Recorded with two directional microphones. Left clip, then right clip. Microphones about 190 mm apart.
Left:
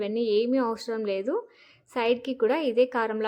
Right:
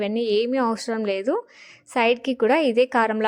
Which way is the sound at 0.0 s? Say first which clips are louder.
Right 3 dB; 35° right (ahead or behind).